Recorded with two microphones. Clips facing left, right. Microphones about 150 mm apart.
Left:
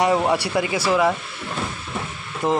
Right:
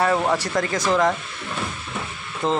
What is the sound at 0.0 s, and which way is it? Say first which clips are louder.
Speech: left 2 dB; 15° left (ahead or behind).